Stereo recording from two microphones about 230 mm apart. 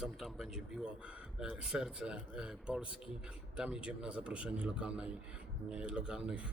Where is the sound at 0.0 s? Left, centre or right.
Centre.